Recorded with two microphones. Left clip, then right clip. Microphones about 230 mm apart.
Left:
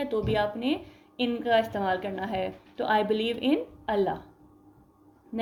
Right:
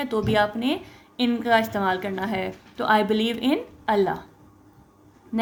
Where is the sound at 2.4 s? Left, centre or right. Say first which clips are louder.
Right 4 dB; right.